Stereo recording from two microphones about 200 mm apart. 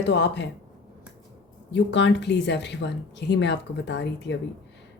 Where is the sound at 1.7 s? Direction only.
60° left (ahead or behind).